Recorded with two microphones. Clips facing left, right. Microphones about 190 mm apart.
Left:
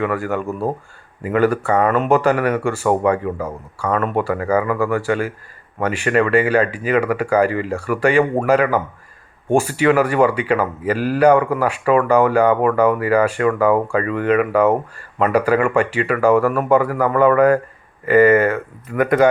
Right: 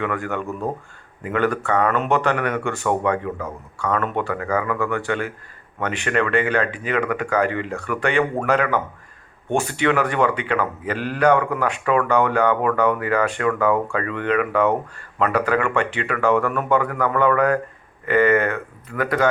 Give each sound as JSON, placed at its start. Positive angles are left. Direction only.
{"t": 0.2, "sound": "speech", "side_deg": 5}